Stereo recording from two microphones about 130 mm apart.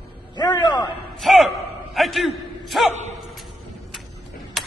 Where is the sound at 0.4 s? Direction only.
35° left (ahead or behind).